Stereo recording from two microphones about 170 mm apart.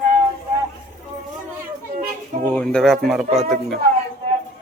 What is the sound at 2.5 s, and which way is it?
Speech, 5° left (ahead or behind).